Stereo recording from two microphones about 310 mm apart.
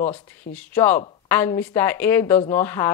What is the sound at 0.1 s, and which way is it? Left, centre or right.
Speech, centre.